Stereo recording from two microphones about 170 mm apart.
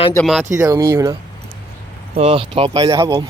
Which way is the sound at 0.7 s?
20° right (ahead or behind).